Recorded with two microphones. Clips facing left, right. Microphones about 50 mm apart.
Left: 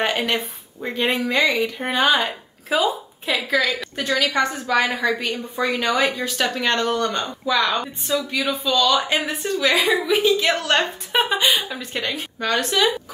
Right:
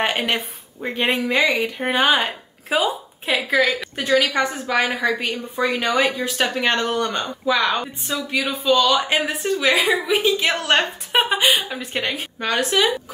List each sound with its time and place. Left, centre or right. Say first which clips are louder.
0.0 s a woman's voice: even; centre
3.8 s a sound: even; centre
4.2 s a woman's voice: even; centre
6.3 s speech: right 1 dB; centre
9.8 s a woman's voice: even; centre